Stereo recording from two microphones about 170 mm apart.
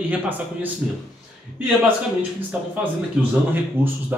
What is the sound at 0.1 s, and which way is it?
Speech, 10° right (ahead or behind).